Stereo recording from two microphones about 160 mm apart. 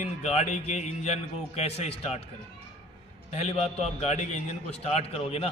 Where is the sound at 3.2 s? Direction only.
40° left (ahead or behind).